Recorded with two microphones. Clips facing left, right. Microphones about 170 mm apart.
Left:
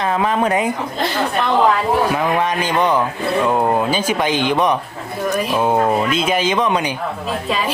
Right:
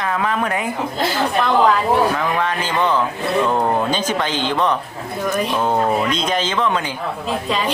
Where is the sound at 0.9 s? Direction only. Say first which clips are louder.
Right 2 dB; centre (ahead or behind).